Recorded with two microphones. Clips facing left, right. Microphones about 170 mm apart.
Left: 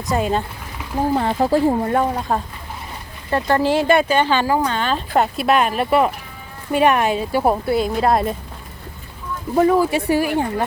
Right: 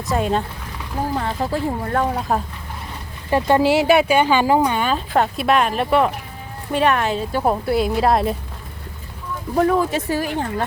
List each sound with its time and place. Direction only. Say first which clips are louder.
0.1 s a woman's voice: even; centre (ahead or behind)
1.1 s speech: left 7 dB; 35° left (ahead or behind)
1.8 s speech: left 2 dB; 15° left (ahead or behind)
2.1 s a woman's voice: even; centre (ahead or behind)
3.2 s speech: right 2 dB; 15° right (ahead or behind)
5.1 s a woman's voice: left 1 dB; 5° left (ahead or behind)
6.7 s a woman's voice: left 2 dB; 15° left (ahead or behind); by 8.4 s centre (ahead or behind)
9.6 s speech: left 2 dB; 5° left (ahead or behind)